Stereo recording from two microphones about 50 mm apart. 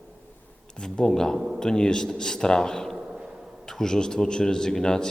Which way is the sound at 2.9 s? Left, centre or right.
Centre.